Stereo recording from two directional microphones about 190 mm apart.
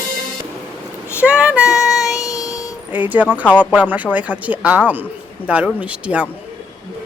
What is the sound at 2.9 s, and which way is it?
Speech, 10° right (ahead or behind).